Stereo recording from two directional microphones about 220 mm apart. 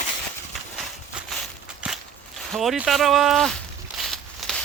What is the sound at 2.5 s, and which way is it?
Speech, centre (ahead or behind).